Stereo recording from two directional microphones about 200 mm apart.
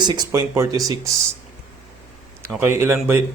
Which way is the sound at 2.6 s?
10° right (ahead or behind).